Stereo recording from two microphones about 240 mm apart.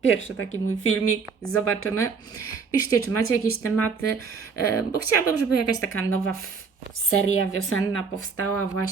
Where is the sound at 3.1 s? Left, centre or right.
Left.